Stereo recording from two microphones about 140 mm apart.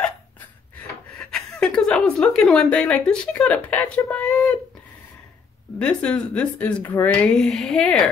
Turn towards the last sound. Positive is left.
turn(degrees=5)  # may be behind; listen again after turning